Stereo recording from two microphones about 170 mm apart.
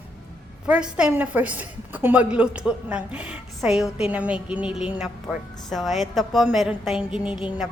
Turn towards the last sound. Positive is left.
turn(degrees=-5)  # may be behind; listen again after turning